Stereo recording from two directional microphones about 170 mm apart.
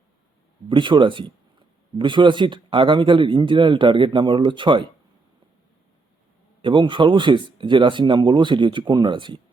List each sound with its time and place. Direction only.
0.7 s speech: 30° right (ahead or behind)
6.6 s speech: 30° right (ahead or behind)